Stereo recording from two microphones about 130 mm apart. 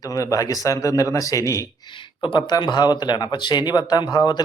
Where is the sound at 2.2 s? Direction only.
35° left (ahead or behind).